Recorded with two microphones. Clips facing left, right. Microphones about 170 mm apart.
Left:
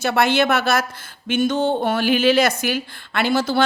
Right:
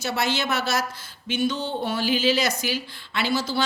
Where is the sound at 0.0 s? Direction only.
60° left (ahead or behind).